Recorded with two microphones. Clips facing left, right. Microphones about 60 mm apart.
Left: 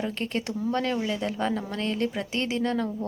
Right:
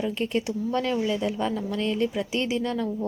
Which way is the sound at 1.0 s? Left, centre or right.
Centre.